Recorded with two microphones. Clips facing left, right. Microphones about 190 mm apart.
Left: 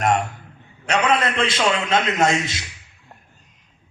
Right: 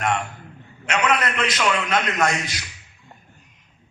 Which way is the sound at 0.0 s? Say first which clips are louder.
Left 4 dB; 40° left (ahead or behind).